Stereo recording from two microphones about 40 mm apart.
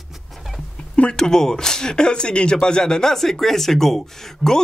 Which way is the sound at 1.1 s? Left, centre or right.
Centre.